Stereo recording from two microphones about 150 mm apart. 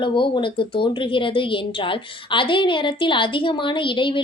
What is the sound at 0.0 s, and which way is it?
A woman's voice, 35° left (ahead or behind).